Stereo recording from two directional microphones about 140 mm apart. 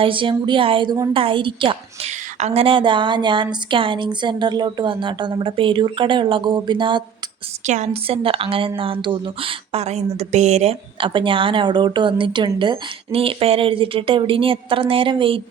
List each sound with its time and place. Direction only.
0.0 s a woman's voice: 35° right (ahead or behind)
2.0 s a woman's voice: 50° right (ahead or behind); by 7.0 s 35° right (ahead or behind)
7.7 s a woman's voice: 50° right (ahead or behind)